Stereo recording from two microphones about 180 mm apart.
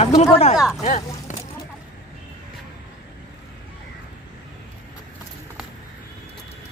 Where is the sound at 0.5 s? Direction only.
5° right (ahead or behind).